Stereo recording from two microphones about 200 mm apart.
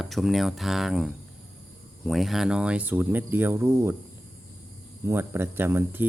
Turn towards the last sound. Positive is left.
turn(degrees=-10)  # may be behind; listen again after turning